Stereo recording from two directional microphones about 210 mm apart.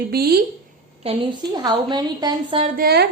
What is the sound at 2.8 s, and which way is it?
Speech, 50° right (ahead or behind).